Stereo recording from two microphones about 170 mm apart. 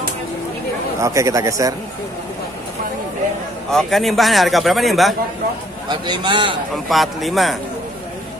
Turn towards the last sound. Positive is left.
turn(degrees=0)  # may be behind; listen again after turning